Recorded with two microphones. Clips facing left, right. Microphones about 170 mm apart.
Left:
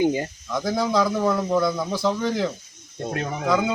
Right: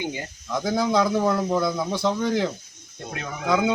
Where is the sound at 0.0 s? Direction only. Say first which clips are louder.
Left 9 dB; 40° left (ahead or behind).